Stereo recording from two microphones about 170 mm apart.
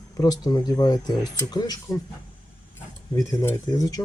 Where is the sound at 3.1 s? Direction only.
15° left (ahead or behind).